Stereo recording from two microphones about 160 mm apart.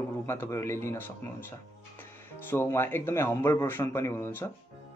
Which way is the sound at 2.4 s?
15° left (ahead or behind).